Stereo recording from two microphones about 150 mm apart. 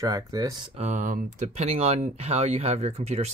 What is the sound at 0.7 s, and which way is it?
Speech, 50° right (ahead or behind).